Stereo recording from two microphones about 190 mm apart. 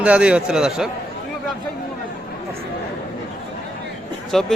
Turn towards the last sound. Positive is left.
turn(degrees=0)  # may be behind; listen again after turning